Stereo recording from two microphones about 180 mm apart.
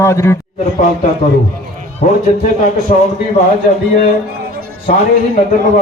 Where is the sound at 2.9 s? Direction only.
45° left (ahead or behind).